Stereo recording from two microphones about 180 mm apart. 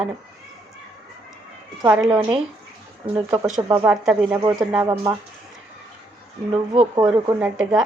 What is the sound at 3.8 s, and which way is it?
Speech, 5° right (ahead or behind).